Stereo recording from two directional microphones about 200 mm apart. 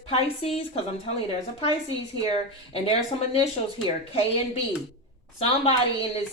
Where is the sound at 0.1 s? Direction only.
30° left (ahead or behind).